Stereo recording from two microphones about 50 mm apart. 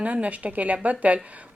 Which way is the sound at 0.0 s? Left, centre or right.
Right.